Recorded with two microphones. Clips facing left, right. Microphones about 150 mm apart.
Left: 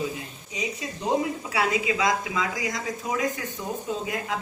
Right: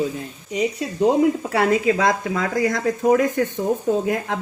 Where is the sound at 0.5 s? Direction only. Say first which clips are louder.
Right 9 dB; 65° right (ahead or behind).